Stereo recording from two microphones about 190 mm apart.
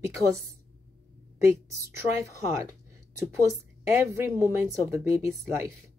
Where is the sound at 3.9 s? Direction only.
15° right (ahead or behind).